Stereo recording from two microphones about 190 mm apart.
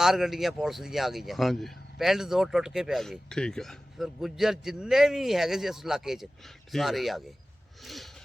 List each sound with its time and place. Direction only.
0.0 s speech: centre (ahead or behind)